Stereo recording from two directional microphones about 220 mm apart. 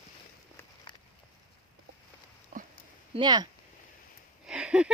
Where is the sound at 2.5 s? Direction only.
35° right (ahead or behind).